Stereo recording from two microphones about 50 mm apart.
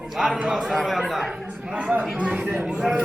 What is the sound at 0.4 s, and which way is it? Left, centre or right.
Speech, centre.